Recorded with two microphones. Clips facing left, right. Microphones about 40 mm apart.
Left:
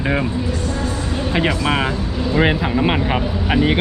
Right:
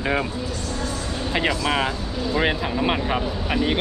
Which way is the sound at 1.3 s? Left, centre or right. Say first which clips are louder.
Left 3 dB; centre.